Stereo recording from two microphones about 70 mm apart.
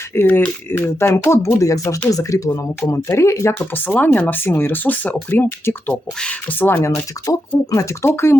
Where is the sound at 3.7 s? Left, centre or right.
Left.